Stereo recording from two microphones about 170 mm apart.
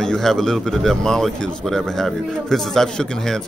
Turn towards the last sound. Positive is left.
turn(degrees=5)  # may be behind; listen again after turning